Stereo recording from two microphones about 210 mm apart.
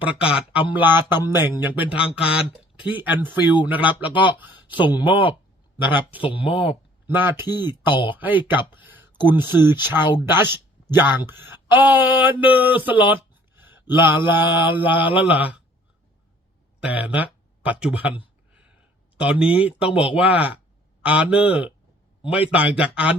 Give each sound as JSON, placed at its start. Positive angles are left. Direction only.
{"t": 0.0, "sound": "speech", "side_deg": -5}
{"t": 5.3, "sound": "a sound", "side_deg": -10}
{"t": 6.2, "sound": "speech", "side_deg": 25}
{"t": 7.1, "sound": "speech", "side_deg": -10}
{"t": 7.9, "sound": "speech", "side_deg": 25}
{"t": 8.1, "sound": "speech", "side_deg": -10}
{"t": 8.8, "sound": "a sound", "side_deg": -10}
{"t": 9.3, "sound": "speech", "side_deg": -10}
{"t": 13.6, "sound": "a sound", "side_deg": -10}
{"t": 14.3, "sound": "speech", "side_deg": -10}
{"t": 16.8, "sound": "speech", "side_deg": -5}
{"t": 19.1, "sound": "speech", "side_deg": -5}